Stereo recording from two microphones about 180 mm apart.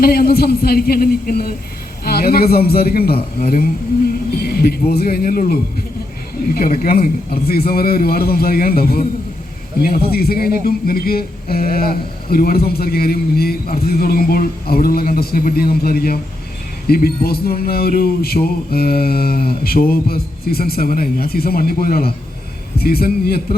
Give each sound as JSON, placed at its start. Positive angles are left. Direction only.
{"t": 0.0, "sound": "speech", "side_deg": 60}